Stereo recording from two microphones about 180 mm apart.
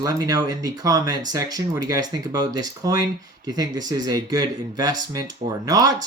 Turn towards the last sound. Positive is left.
turn(degrees=-20)  # may be behind; listen again after turning